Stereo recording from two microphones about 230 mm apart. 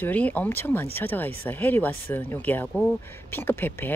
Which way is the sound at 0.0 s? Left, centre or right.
Centre.